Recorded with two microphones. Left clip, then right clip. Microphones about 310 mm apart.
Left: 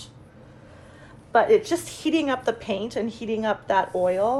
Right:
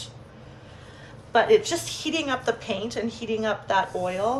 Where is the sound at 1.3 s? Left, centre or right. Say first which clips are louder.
Left 1 dB; centre.